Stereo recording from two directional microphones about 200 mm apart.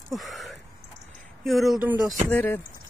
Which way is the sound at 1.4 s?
Centre (ahead or behind).